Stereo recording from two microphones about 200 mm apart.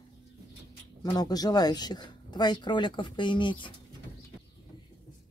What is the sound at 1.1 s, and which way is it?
Speech, 20° left (ahead or behind).